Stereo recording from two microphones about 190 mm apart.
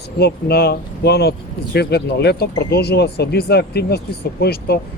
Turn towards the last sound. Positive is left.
turn(degrees=55)  # may be behind; listen again after turning